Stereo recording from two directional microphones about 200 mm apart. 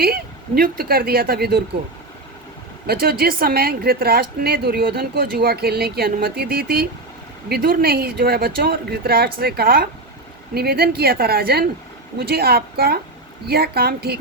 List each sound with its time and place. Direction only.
0.0 s a woman's voice: 50° right (ahead or behind)
2.8 s a woman's voice: 50° right (ahead or behind)